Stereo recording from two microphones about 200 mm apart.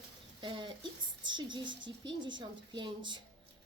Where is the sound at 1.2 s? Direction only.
25° right (ahead or behind).